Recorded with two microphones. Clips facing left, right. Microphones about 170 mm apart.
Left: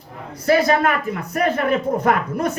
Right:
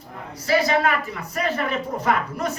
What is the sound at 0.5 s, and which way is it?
Speech, 50° left (ahead or behind).